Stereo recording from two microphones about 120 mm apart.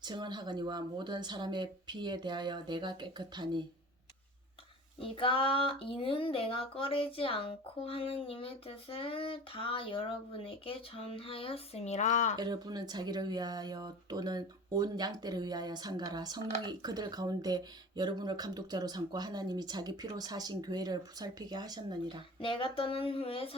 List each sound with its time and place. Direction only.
0.0 s speech: 40° right (ahead or behind)
4.9 s speech: 50° left (ahead or behind); by 12.4 s 90° left
12.4 s speech: 35° right (ahead or behind)
22.4 s speech: 45° left (ahead or behind)